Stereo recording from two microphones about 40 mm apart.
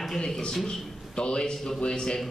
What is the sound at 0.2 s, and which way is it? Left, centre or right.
Speech, centre.